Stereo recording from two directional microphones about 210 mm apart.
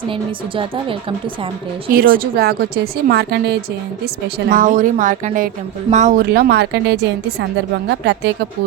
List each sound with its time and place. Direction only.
0.0 s a woman's voice: 25° right (ahead or behind)
1.9 s a woman's voice: 45° right (ahead or behind)